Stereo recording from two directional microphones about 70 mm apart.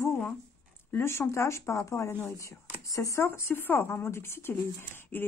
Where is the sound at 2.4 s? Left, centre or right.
Left.